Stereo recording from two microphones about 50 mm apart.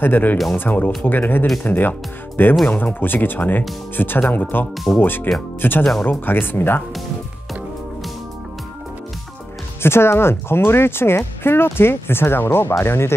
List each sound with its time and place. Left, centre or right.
0.0 s speech: left
9.8 s speech: left